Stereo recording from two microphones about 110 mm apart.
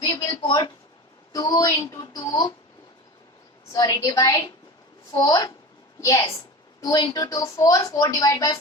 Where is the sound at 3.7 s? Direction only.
35° left (ahead or behind).